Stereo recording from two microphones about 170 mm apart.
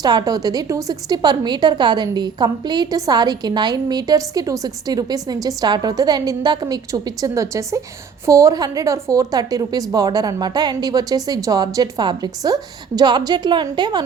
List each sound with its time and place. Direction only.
0.0 s a woman's voice: 25° right (ahead or behind)